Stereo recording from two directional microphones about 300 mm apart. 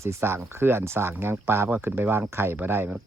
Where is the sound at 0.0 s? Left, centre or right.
Centre.